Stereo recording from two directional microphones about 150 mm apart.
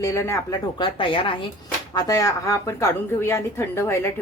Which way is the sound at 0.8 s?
35° left (ahead or behind).